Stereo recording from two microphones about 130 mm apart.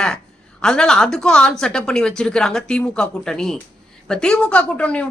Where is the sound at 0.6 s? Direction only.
5° left (ahead or behind).